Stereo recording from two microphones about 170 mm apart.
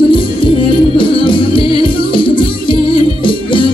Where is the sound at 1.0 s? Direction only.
30° left (ahead or behind).